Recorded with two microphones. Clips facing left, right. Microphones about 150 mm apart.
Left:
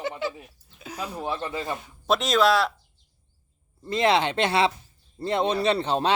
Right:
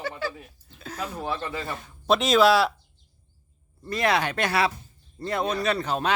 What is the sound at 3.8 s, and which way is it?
Speech, 25° left (ahead or behind).